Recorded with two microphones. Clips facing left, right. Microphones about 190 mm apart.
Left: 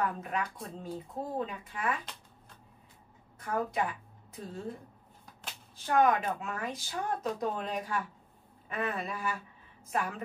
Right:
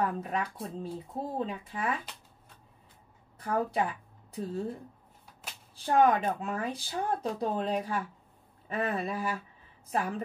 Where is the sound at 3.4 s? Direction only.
35° right (ahead or behind).